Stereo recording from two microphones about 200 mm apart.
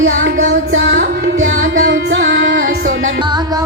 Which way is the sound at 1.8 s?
60° right (ahead or behind).